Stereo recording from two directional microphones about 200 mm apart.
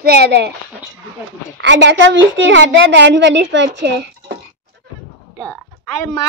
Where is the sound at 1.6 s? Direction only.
60° right (ahead or behind).